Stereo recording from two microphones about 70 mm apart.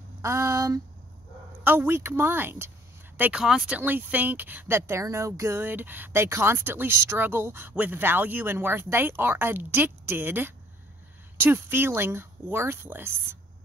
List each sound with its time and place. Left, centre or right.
0.2 s speech: right
1.6 s speech: right
3.3 s speech: centre
3.7 s speech: right
5.0 s speech: right
5.6 s speech: right
6.2 s speech: right